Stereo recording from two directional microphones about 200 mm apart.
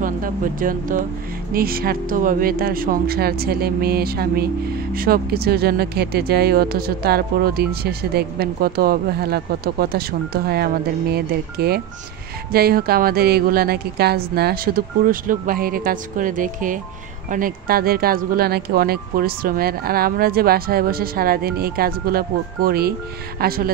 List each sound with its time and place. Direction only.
0.0 s speech: 45° right (ahead or behind)